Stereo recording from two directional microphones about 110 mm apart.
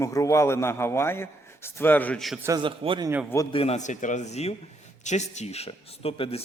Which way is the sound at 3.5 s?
65° left (ahead or behind).